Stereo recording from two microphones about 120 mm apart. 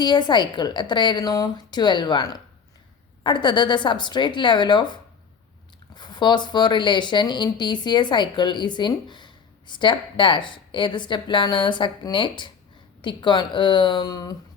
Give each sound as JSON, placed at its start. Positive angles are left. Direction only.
{"t": 0.0, "sound": "speech", "side_deg": 35}